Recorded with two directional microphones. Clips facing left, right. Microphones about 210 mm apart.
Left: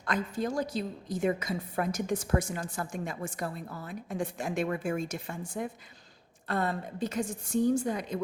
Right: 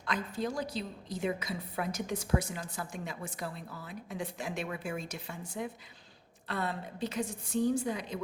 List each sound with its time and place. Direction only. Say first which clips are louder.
0.0 s a woman's voice: left 3 dB; 45° left (ahead or behind)